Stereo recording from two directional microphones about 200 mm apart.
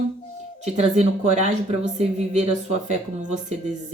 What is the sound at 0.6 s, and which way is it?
Speech, 35° right (ahead or behind).